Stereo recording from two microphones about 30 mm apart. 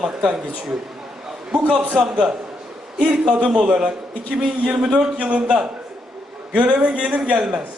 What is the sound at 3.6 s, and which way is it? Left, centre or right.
Speech, right.